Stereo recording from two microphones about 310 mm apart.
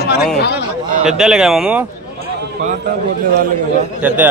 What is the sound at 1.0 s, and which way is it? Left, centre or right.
Speech, centre.